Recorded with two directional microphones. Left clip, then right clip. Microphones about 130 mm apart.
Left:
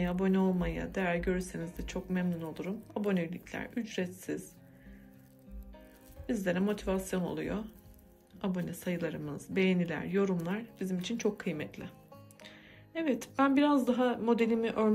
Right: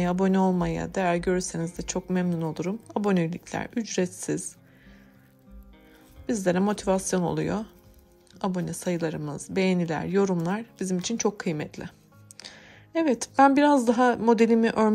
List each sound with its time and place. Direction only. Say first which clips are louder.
0.0 s speech: right 7 dB; 40° right (ahead or behind)
6.2 s speech: right 7 dB; 40° right (ahead or behind)